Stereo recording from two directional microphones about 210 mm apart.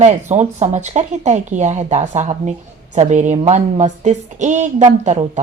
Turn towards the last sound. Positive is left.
turn(degrees=-35)  # may be behind; listen again after turning